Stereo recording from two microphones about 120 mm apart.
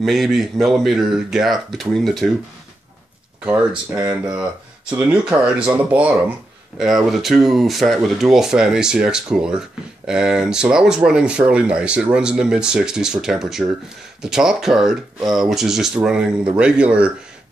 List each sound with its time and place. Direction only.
0.0 s speech: centre (ahead or behind)
3.4 s speech: 10° right (ahead or behind)
4.0 s speech: 30° right (ahead or behind)
4.3 s speech: 10° right (ahead or behind)